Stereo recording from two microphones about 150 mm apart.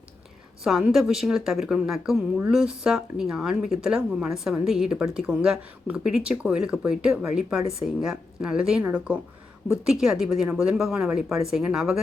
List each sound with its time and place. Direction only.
0.6 s speech: centre (ahead or behind)